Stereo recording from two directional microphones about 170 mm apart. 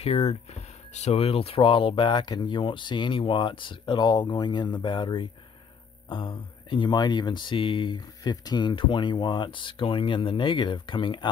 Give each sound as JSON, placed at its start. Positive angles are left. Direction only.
{"t": 0.0, "sound": "speech", "side_deg": 35}